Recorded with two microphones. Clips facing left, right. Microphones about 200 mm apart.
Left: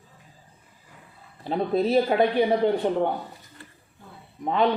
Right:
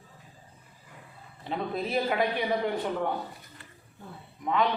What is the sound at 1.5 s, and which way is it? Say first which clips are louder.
A man's voice: left 8 dB; 35° left (ahead or behind).